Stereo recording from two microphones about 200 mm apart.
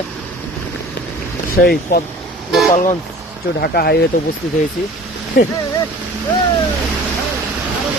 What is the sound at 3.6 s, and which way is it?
Speech, 55° left (ahead or behind).